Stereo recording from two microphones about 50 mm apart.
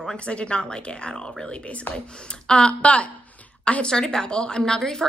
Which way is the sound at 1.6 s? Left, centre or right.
Left.